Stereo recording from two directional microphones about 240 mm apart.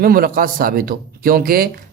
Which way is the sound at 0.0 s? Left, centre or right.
Right.